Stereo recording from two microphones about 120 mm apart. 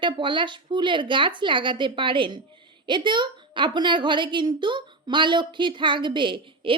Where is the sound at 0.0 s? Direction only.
40° right (ahead or behind).